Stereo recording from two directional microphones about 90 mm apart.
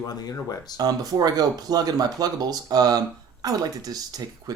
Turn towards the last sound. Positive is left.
turn(degrees=-45)  # may be behind; listen again after turning